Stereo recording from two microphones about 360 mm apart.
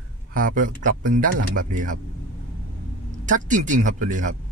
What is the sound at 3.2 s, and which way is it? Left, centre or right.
Speech, right.